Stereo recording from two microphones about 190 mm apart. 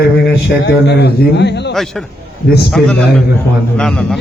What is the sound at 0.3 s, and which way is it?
A man's voice, 70° left (ahead or behind).